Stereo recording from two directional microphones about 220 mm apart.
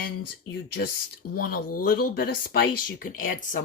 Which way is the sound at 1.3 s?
40° left (ahead or behind).